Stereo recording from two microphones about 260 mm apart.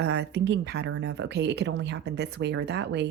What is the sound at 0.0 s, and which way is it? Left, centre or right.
Speech, right.